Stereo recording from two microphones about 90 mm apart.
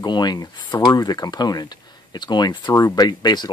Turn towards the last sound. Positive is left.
turn(degrees=50)  # may be behind; listen again after turning